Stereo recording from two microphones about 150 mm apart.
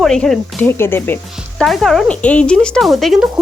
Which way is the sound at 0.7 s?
15° left (ahead or behind).